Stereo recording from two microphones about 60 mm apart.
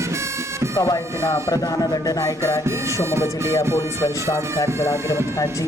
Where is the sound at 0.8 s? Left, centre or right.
Left.